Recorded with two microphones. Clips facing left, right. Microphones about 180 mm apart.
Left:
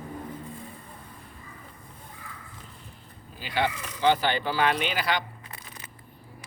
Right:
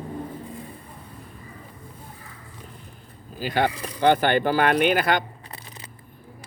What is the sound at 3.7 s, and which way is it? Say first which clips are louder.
Speech: right 5 dB; 35° right (ahead or behind).